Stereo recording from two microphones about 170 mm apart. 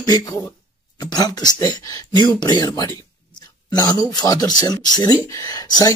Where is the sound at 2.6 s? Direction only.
20° left (ahead or behind).